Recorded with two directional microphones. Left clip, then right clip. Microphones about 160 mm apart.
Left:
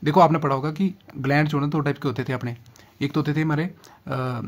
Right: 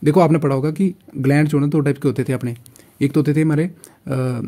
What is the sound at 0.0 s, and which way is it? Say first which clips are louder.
Speech: right 2 dB; 35° right (ahead or behind).